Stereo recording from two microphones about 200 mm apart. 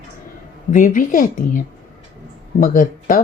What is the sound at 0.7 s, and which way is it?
Speech, 40° left (ahead or behind).